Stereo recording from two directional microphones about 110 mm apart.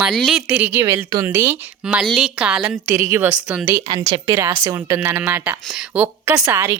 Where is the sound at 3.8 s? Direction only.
40° right (ahead or behind).